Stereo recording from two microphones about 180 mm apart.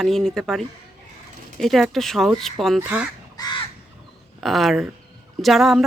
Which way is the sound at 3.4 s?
20° left (ahead or behind).